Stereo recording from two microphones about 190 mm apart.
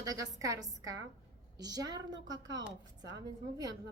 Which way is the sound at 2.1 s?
75° right (ahead or behind).